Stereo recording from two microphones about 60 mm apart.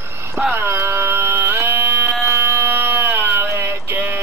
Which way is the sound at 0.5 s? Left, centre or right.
Right.